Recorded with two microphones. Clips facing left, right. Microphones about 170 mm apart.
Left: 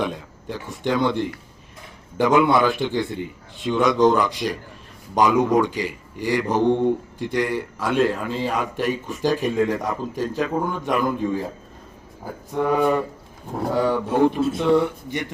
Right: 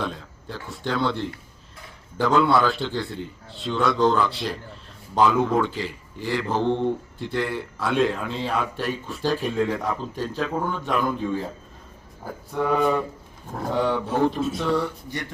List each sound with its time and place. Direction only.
0.0 s a man's voice: 15° left (ahead or behind)
9.8 s a man's voice: 10° left (ahead or behind)